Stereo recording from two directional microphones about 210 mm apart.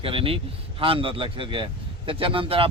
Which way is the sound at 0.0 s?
25° right (ahead or behind).